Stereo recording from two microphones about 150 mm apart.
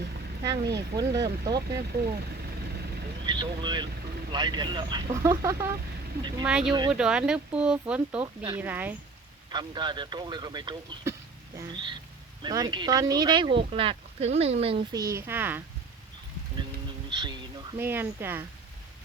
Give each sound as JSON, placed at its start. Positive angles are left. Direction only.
{"t": 0.4, "sound": "speech", "side_deg": -25}
{"t": 3.2, "sound": "speech", "side_deg": -30}
{"t": 5.1, "sound": "speech", "side_deg": -20}
{"t": 6.4, "sound": "speech", "side_deg": -5}
{"t": 9.5, "sound": "speech", "side_deg": -30}
{"t": 14.9, "sound": "speech", "side_deg": -20}
{"t": 17.1, "sound": "speech", "side_deg": -30}
{"t": 17.7, "sound": "speech", "side_deg": -15}